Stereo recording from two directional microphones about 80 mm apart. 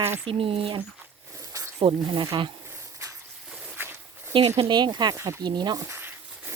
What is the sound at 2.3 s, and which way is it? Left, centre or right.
Speech, right.